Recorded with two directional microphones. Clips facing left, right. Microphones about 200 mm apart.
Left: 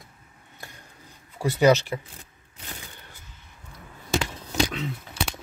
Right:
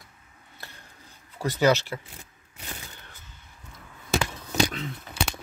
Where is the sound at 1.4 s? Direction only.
15° left (ahead or behind).